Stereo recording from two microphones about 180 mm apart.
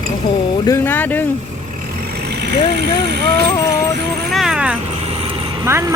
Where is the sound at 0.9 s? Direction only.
10° left (ahead or behind).